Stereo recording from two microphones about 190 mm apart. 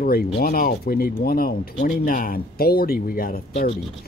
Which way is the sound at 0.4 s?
50° left (ahead or behind).